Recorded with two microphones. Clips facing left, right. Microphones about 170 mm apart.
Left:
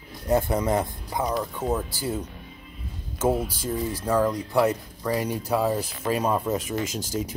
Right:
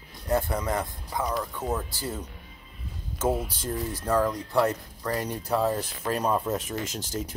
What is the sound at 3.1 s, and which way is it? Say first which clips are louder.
Speech: left 3 dB; 5° left (ahead or behind).